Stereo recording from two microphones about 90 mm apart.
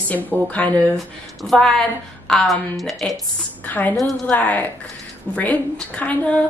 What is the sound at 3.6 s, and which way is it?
Speech, 20° left (ahead or behind).